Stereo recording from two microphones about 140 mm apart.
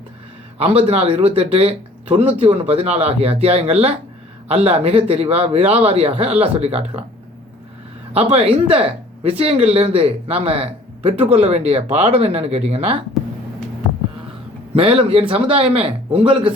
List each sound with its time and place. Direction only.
0.6 s a man's voice: 45° right (ahead or behind)
8.1 s a man's voice: 45° right (ahead or behind)
14.8 s a man's voice: 45° right (ahead or behind)